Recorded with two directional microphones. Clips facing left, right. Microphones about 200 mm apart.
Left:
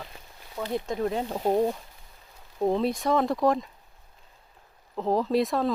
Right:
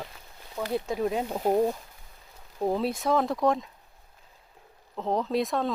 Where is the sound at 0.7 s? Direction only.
10° right (ahead or behind).